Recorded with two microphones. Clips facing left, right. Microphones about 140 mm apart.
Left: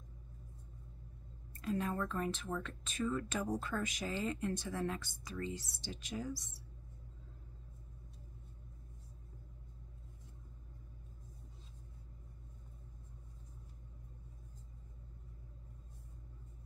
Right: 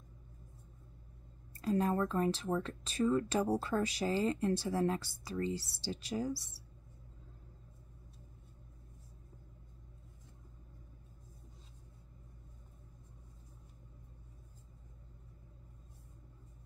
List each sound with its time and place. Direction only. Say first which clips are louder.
1.6 s speech: right 5 dB; 35° right (ahead or behind)